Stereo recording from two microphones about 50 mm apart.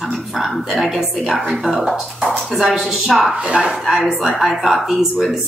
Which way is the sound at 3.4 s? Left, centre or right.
Centre.